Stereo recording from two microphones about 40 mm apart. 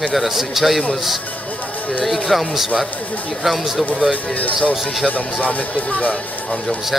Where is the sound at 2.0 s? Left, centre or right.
Centre.